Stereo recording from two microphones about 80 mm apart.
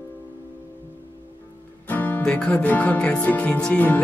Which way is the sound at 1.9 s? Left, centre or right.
Left.